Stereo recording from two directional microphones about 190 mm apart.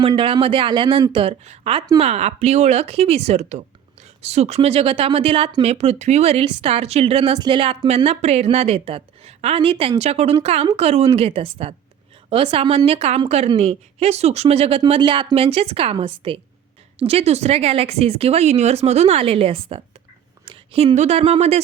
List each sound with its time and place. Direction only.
0.0 s speech: 30° right (ahead or behind)